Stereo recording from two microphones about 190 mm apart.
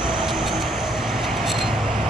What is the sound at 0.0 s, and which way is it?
Train, 5° right (ahead or behind).